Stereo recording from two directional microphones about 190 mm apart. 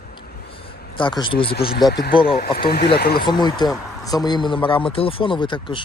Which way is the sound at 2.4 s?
55° left (ahead or behind).